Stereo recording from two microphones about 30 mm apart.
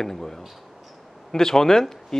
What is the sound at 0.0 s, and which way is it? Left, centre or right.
Speech, centre.